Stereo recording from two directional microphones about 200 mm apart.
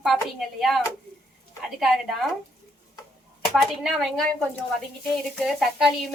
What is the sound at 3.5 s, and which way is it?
Speech, centre (ahead or behind).